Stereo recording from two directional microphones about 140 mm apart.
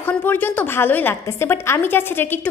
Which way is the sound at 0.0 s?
15° left (ahead or behind).